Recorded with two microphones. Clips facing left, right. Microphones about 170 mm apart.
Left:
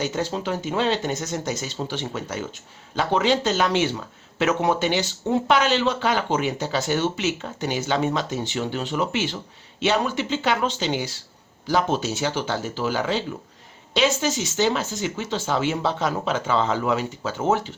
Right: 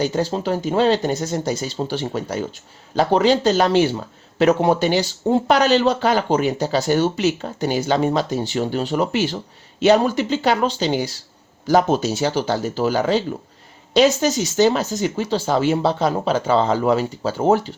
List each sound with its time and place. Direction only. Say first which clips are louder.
0.0 s speech: right 5 dB; 35° right (ahead or behind)